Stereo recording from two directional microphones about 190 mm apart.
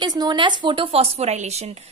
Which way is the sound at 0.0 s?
20° right (ahead or behind).